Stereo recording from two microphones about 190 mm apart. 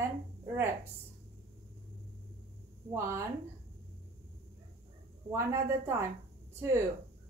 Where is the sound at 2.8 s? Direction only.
15° right (ahead or behind).